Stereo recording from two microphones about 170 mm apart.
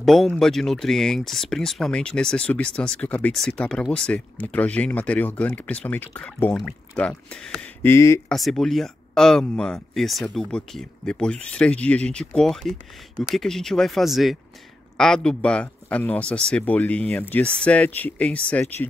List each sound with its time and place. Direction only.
0.0 s speech: centre (ahead or behind)
8.3 s a man's voice: centre (ahead or behind)